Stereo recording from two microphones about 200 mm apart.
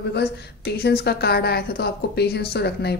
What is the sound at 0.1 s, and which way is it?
A woman's voice, 55° left (ahead or behind).